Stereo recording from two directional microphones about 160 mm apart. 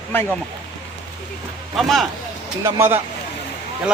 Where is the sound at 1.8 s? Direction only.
Centre (ahead or behind).